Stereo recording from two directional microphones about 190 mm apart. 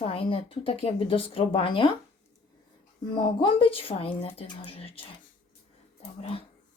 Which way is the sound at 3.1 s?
25° left (ahead or behind).